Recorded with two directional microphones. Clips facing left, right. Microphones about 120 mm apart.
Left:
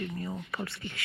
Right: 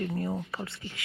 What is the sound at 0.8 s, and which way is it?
Speech, 60° left (ahead or behind).